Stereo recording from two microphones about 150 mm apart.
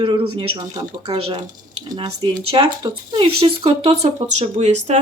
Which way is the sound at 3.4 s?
40° right (ahead or behind).